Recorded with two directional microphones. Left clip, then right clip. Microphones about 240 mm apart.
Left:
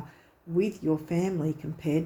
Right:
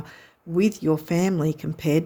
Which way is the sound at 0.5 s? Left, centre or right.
Right.